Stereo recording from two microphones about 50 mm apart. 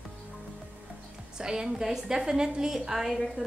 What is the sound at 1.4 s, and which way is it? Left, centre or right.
A woman's voice, centre.